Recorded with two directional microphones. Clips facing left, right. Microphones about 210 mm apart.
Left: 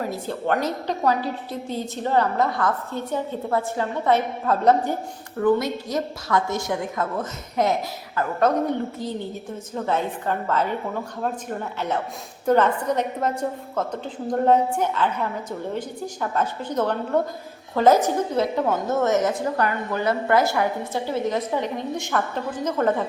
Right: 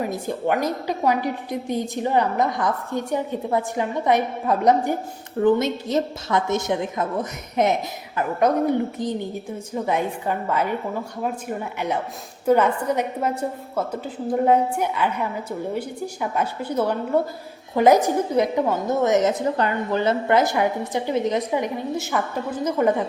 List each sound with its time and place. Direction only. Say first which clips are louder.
0.0 s a woman's voice: right 2 dB; 15° right (ahead or behind)